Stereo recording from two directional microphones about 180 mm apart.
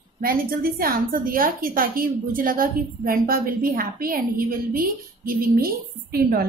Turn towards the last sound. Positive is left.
turn(degrees=-55)  # may be behind; listen again after turning